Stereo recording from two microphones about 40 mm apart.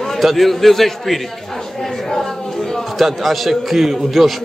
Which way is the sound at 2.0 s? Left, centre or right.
Centre.